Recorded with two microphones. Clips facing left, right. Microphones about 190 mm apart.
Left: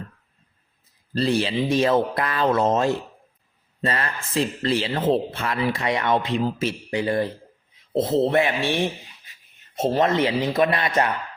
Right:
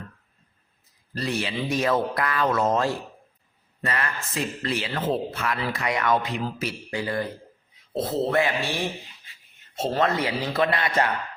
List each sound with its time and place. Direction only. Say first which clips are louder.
1.1 s speech: left 6 dB; 30° left (ahead or behind)